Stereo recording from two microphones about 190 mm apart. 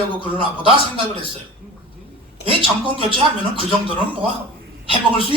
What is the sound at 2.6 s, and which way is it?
A man's voice, 25° right (ahead or behind).